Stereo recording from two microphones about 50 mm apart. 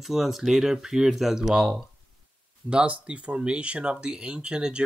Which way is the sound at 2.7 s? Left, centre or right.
Right.